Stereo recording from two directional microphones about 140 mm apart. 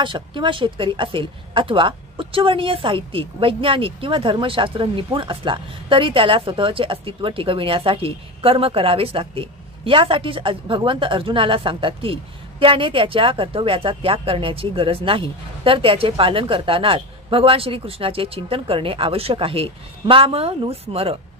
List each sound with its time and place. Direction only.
0.0 s speech: 35° right (ahead or behind)